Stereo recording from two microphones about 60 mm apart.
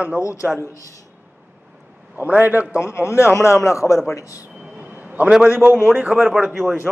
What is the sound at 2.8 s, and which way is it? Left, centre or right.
A man's voice, left.